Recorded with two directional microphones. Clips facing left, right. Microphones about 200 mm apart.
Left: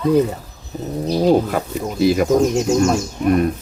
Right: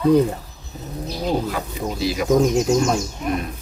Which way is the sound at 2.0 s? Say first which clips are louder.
Left 9 dB; 50° left (ahead or behind).